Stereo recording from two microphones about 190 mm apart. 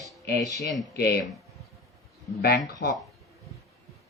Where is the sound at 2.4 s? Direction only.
55° left (ahead or behind).